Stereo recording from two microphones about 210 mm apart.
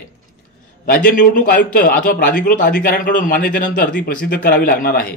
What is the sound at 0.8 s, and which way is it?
A man's voice, 45° left (ahead or behind).